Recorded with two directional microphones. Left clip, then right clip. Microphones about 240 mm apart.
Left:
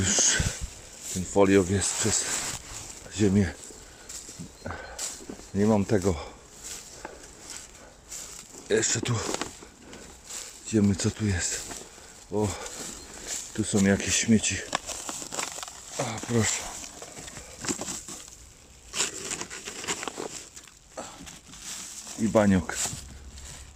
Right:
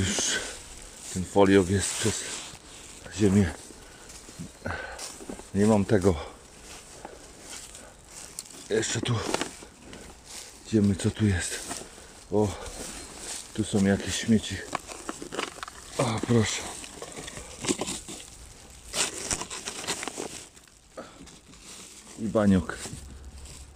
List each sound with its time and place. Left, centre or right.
0.0 s a sound: centre
1.1 s speech: centre
4.6 s a sound: centre
5.5 s speech: centre
8.7 s speech: centre
10.3 s speech: centre
12.3 s speech: centre
14.7 s a sound: left
16.6 s a sound: left
18.9 s crushing: centre
19.4 s patter: centre
19.6 s patter: centre
22.3 s speech: centre